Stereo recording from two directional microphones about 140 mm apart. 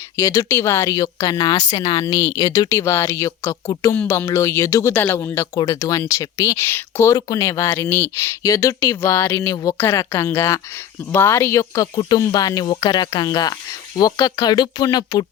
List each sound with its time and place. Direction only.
0.2 s speech: 20° left (ahead or behind)